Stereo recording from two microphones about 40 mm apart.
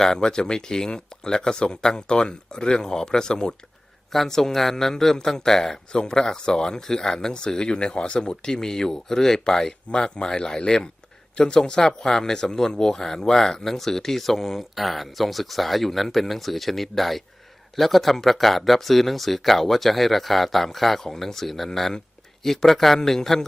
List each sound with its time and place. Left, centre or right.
0.0 s speech: centre
4.1 s speech: centre